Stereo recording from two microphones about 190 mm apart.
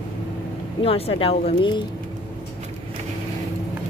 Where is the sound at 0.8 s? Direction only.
30° left (ahead or behind).